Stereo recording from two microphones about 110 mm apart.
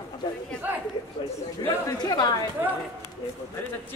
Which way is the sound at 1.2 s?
50° left (ahead or behind).